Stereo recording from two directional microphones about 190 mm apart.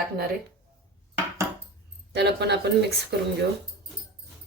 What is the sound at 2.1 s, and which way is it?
Speech, 60° right (ahead or behind).